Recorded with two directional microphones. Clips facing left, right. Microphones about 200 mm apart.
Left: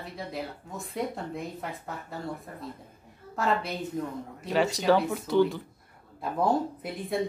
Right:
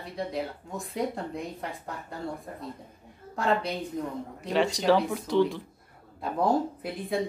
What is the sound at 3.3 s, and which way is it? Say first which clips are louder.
A woman's voice: right 1 dB; 5° left (ahead or behind).